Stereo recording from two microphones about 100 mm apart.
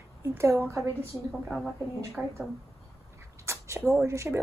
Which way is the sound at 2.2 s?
15° right (ahead or behind).